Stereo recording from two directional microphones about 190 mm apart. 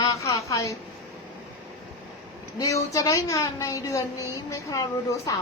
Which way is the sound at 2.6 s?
15° left (ahead or behind).